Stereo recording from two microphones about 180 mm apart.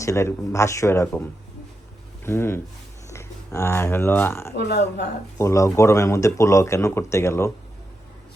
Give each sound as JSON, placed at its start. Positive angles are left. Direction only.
{"t": 0.0, "sound": "speech", "side_deg": 15}
{"t": 4.5, "sound": "speech", "side_deg": 65}
{"t": 5.4, "sound": "speech", "side_deg": 15}